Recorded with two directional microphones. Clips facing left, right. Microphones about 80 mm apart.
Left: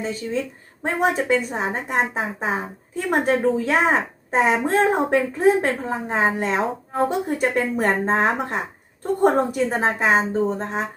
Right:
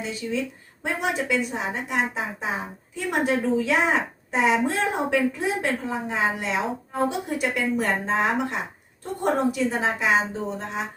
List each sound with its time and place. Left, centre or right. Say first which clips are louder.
0.0 s a woman's voice: left 3 dB; left